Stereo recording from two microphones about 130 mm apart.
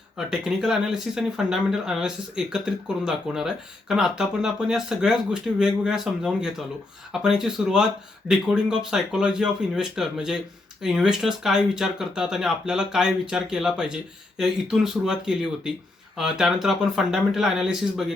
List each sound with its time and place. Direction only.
0.2 s speech: 5° right (ahead or behind)